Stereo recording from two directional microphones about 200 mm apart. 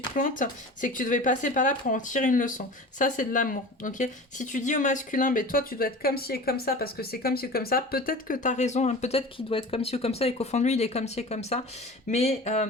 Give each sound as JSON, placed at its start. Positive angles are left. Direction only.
{"t": 0.2, "sound": "speech", "side_deg": 40}